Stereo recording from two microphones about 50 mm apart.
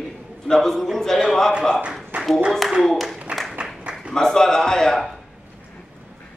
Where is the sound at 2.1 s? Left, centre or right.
Right.